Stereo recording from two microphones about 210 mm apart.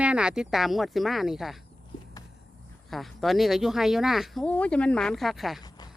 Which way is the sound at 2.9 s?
Centre (ahead or behind).